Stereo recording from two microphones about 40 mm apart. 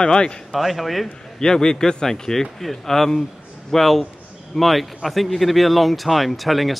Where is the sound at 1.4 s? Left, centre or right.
Centre.